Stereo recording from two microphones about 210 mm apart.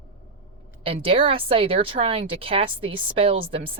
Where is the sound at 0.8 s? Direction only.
25° right (ahead or behind).